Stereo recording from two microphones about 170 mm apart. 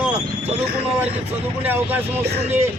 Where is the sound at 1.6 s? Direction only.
10° right (ahead or behind).